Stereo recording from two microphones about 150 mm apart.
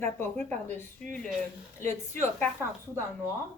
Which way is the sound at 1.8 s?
15° left (ahead or behind).